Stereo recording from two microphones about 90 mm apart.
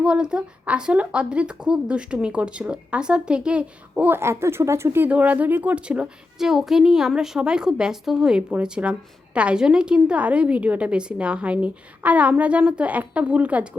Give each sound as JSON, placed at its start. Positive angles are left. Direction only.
{"t": 0.0, "sound": "a woman's voice", "side_deg": -10}
{"t": 4.1, "sound": "speech", "side_deg": -30}
{"t": 5.0, "sound": "a woman's voice", "side_deg": -15}